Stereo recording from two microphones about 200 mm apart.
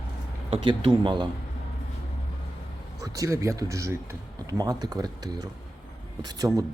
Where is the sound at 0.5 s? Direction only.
25° right (ahead or behind).